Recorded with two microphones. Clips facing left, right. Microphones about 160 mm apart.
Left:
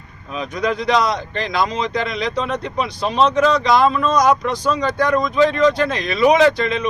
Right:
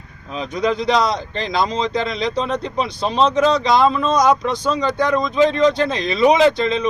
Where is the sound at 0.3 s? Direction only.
30° right (ahead or behind).